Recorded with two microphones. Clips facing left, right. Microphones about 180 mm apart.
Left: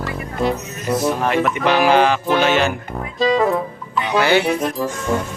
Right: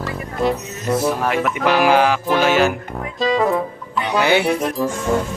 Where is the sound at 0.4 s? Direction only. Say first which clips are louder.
Right 1 dB; centre (ahead or behind).